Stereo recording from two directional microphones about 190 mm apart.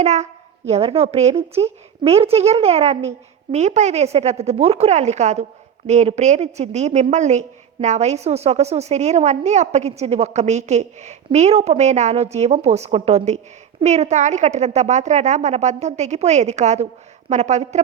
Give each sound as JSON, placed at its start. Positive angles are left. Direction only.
{"t": 0.0, "sound": "a woman's voice", "side_deg": -35}